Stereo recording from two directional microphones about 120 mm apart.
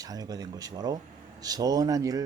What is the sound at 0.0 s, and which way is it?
Speech, 30° right (ahead or behind).